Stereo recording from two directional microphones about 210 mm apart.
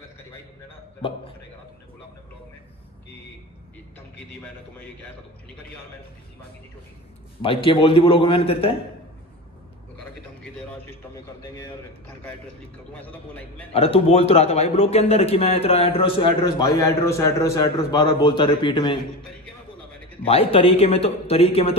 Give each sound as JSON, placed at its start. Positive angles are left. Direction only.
{"t": 7.4, "sound": "a man's voice", "side_deg": 25}
{"t": 12.9, "sound": "a man's voice", "side_deg": 10}
{"t": 13.7, "sound": "a man's voice", "side_deg": 30}
{"t": 20.2, "sound": "a man's voice", "side_deg": 25}